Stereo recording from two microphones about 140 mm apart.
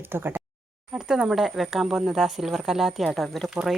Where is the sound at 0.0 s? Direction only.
15° right (ahead or behind).